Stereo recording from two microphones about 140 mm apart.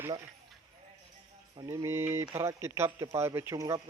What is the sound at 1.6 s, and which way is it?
Speech, 20° right (ahead or behind).